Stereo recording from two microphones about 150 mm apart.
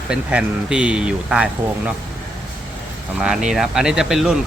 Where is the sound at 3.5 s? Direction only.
5° right (ahead or behind).